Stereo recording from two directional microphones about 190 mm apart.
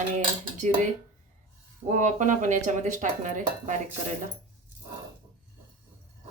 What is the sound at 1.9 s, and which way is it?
Speech, 40° right (ahead or behind).